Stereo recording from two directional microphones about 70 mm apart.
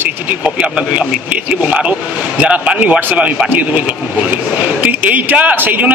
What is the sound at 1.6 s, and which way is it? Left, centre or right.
Speech, centre.